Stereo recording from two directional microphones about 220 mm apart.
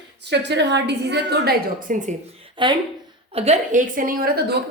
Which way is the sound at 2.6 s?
20° right (ahead or behind).